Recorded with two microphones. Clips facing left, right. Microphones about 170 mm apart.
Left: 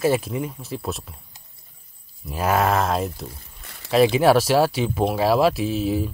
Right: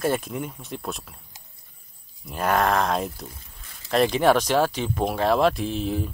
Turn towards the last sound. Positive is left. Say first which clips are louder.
# left 4 dB
turn(degrees=5)  # may be behind; listen again after turning